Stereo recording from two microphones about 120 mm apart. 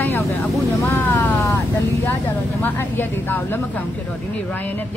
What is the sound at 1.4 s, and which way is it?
Speech, 25° left (ahead or behind).